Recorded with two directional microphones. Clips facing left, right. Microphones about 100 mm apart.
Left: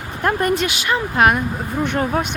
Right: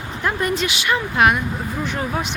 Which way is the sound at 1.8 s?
55° left (ahead or behind).